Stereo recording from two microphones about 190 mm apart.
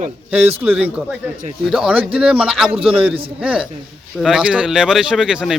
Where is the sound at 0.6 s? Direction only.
5° right (ahead or behind).